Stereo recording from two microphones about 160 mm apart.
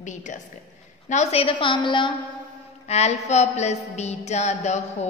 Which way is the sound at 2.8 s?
40° left (ahead or behind).